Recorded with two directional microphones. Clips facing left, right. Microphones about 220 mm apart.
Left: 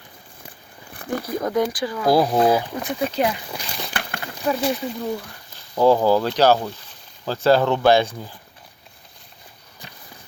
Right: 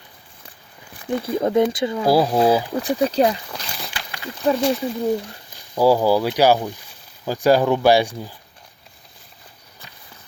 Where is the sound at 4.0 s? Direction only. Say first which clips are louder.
Left 5 dB; 60° left (ahead or behind).